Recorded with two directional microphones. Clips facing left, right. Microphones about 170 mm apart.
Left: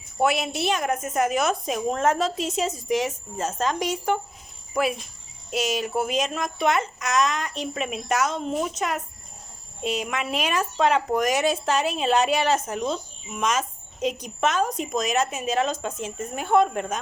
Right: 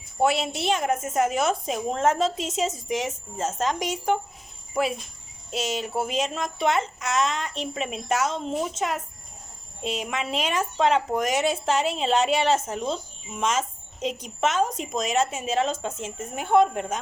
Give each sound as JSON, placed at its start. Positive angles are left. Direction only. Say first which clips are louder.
{"t": 0.2, "sound": "speech", "louder": "even", "side_deg": -25}